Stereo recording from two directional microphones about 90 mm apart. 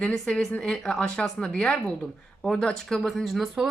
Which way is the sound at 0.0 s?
10° left (ahead or behind).